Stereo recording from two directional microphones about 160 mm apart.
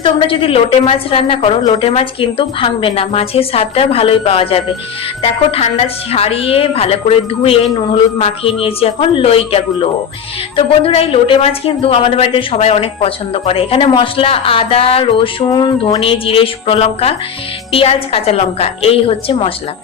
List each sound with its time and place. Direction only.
0.0 s speech: 35° left (ahead or behind)